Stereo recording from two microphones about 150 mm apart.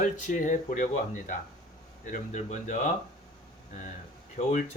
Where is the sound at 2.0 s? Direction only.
55° left (ahead or behind).